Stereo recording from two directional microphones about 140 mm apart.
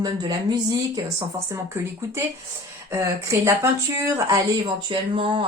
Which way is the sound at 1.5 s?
15° right (ahead or behind).